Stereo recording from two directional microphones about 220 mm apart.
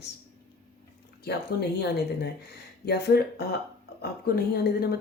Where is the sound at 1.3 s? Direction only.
45° left (ahead or behind).